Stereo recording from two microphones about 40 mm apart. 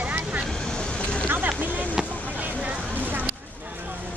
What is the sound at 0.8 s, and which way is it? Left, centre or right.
Vehicle, left.